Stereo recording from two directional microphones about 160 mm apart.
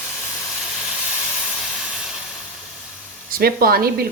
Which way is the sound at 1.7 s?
5° right (ahead or behind).